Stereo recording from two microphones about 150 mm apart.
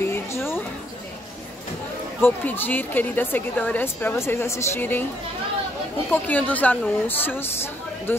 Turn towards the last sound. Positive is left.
turn(degrees=15)  # may be behind; listen again after turning